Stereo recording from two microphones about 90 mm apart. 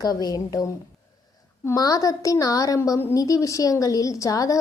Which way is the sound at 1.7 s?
45° left (ahead or behind).